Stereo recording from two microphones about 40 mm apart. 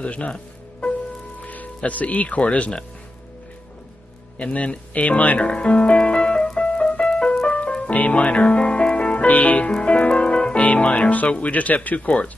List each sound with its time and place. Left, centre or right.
0.0 s music: left
1.4 s music: left
1.8 s speech: left
4.4 s speech: left
5.4 s music: left
9.7 s speech: left